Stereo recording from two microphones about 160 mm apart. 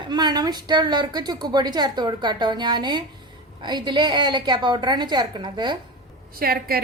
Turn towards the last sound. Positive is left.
turn(degrees=-70)  # may be behind; listen again after turning